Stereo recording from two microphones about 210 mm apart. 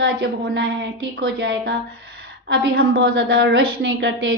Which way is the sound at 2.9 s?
45° right (ahead or behind).